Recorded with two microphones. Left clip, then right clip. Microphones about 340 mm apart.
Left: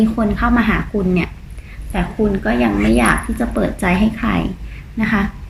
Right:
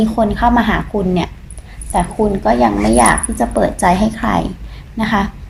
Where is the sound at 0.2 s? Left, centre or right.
Centre.